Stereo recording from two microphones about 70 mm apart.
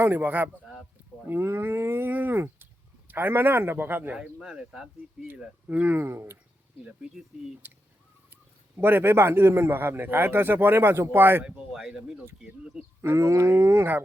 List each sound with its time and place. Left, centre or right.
0.0 s a man's voice: right
4.2 s speech: centre
5.6 s speech: right
6.0 s a man's voice: right
7.6 s a man's voice: right
11.4 s speech: centre
13.0 s a sound: right